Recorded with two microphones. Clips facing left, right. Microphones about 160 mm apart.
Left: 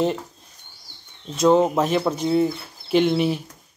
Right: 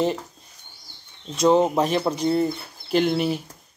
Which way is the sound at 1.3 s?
Centre (ahead or behind).